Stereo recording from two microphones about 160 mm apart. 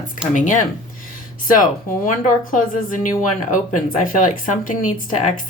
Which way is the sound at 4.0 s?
55° left (ahead or behind).